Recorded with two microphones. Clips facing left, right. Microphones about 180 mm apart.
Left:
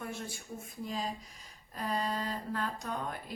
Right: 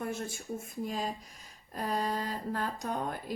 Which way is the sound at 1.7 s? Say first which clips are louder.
Right 2 dB; 45° right (ahead or behind).